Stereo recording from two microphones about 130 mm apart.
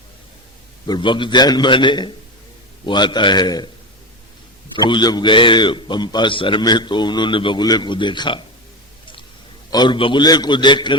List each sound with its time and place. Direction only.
0.9 s a man's voice: 35° left (ahead or behind)
4.8 s a man's voice: 35° left (ahead or behind)
9.6 s a man's voice: 35° left (ahead or behind)